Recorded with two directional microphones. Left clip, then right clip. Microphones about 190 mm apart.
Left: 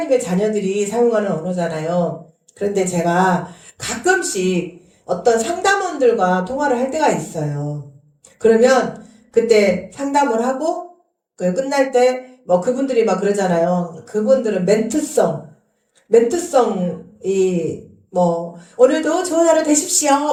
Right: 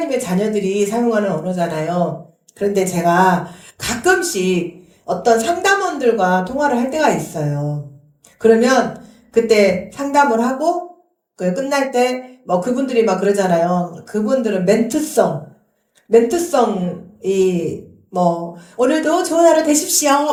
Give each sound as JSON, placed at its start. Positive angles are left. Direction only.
{"t": 0.0, "sound": "a man's voice", "side_deg": -40}